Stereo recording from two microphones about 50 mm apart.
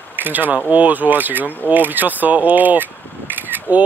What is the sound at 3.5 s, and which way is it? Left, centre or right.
Camera, right.